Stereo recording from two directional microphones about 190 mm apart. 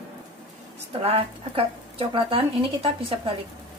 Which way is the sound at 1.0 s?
30° right (ahead or behind).